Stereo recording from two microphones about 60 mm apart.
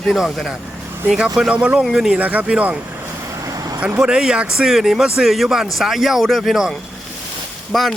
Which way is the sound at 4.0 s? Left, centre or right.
Centre.